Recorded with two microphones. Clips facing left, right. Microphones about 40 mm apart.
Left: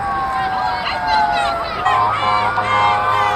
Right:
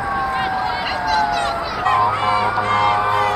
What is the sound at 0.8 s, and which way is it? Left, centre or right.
Music, left.